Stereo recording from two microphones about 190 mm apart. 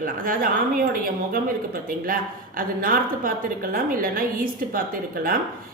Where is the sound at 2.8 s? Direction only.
50° right (ahead or behind).